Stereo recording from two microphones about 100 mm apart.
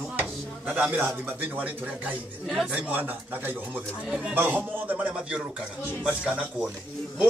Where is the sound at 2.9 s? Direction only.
15° right (ahead or behind).